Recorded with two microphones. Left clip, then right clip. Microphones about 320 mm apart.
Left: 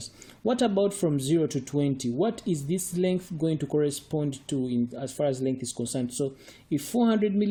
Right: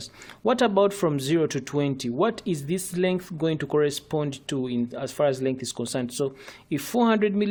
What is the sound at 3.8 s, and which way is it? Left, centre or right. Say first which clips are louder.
Speech: right 4 dB; right.